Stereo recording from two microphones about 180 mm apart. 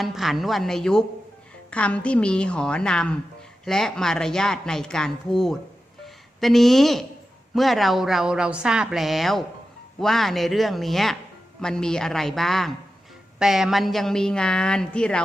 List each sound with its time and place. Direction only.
0.0 s speech: centre (ahead or behind)